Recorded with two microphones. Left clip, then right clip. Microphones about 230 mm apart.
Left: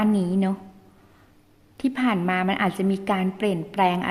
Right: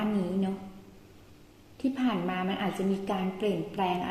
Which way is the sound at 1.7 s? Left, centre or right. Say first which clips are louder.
Left 6 dB; left.